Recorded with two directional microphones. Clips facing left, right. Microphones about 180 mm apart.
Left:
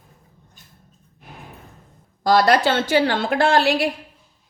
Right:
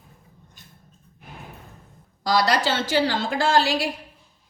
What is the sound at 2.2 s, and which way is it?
A woman's voice, 55° left (ahead or behind).